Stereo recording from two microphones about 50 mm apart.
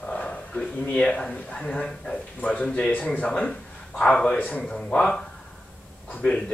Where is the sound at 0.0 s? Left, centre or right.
Left.